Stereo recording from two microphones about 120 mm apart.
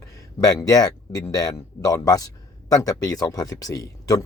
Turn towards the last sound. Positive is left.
turn(degrees=30)  # may be behind; listen again after turning